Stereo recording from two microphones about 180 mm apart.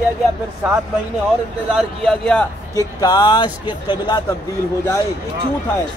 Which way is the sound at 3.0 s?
20° left (ahead or behind).